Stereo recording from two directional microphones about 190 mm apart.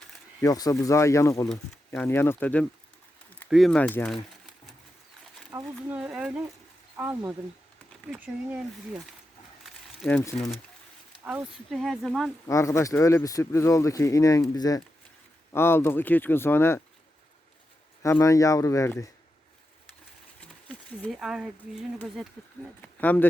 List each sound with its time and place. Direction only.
0.4 s speech: 20° left (ahead or behind)
5.5 s a sound: 15° right (ahead or behind)
6.0 s speech: 5° right (ahead or behind)
10.0 s speech: 10° left (ahead or behind)
11.2 s speech: 5° right (ahead or behind)
12.5 s speech: 15° left (ahead or behind)
18.0 s speech: 15° left (ahead or behind)
20.4 s a sound: 5° left (ahead or behind)
22.0 s speech: centre (ahead or behind)
22.8 s speech: 10° left (ahead or behind)